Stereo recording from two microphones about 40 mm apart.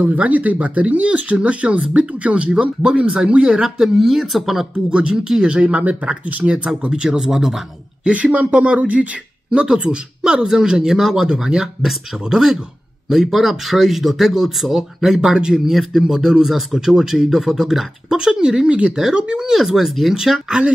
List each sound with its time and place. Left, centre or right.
0.0 s a man's voice: right
3.8 s speech: centre
4.9 s a man's voice: right
5.6 s a man's voice: right
6.9 s speech: centre
8.1 s speech: right
9.5 s a man's voice: right
11.0 s speech: centre
18.1 s speech: centre
18.7 s a man's voice: right
19.5 s speech: centre